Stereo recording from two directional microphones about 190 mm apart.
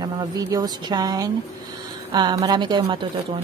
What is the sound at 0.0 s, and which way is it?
A woman's voice, 20° right (ahead or behind).